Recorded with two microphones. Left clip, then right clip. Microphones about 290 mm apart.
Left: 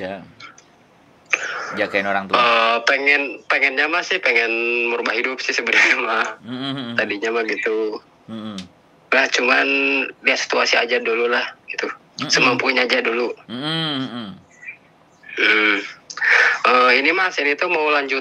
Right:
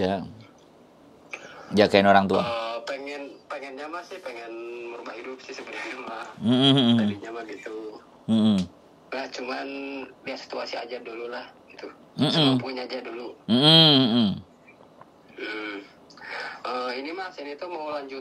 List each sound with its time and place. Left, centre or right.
1.3 s a sound: left
1.8 s speech: right
2.3 s speech: left
6.4 s speech: right
7.0 s speech: left
8.3 s a sound: right
9.1 s speech: left
13.5 s a sound: right
15.3 s speech: left